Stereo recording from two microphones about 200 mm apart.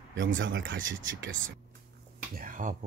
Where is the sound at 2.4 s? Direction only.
40° right (ahead or behind).